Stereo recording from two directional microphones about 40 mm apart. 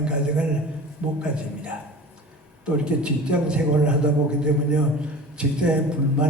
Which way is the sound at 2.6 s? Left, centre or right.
Right.